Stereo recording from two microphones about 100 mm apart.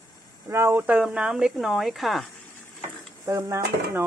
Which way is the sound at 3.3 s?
30° right (ahead or behind).